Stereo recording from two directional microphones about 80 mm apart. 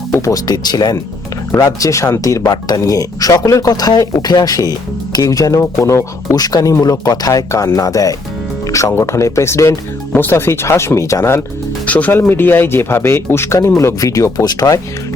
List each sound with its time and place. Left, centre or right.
0.1 s speech: left
2.5 s speech: left
6.3 s speech: left
10.1 s speech: left
11.9 s speech: centre; by 14.8 s left